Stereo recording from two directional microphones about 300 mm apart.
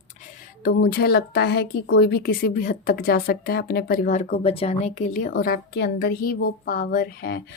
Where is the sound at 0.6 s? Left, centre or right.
Left.